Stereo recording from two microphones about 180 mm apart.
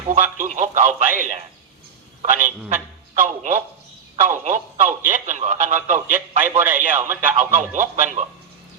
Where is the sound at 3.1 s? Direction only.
40° right (ahead or behind).